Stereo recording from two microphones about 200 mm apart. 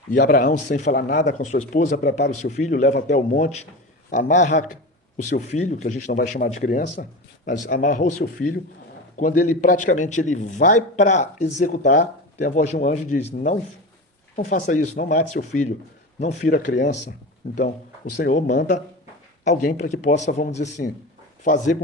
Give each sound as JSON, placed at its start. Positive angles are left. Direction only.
{"t": 0.1, "sound": "speech", "side_deg": 45}